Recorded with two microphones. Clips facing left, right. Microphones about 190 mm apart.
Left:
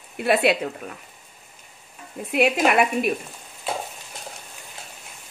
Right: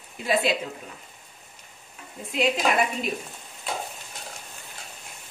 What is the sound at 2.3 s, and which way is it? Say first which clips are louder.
Speech: left 4 dB; 60° left (ahead or behind).